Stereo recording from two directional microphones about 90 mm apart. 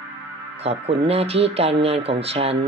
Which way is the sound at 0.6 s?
90° right.